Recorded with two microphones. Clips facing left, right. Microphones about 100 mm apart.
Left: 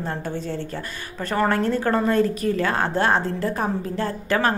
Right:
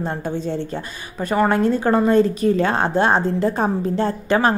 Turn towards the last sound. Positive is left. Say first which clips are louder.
# right 4 dB
turn(degrees=-20)  # may be behind; listen again after turning